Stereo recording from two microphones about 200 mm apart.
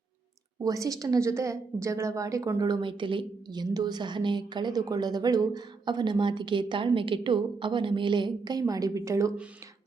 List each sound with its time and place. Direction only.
0.6 s a woman's voice: 15° right (ahead or behind)